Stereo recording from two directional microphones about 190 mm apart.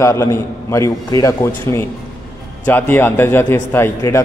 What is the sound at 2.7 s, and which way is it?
A man's voice, 10° left (ahead or behind).